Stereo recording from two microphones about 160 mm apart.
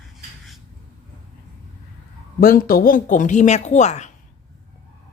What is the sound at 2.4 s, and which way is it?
A woman's voice, 65° left (ahead or behind).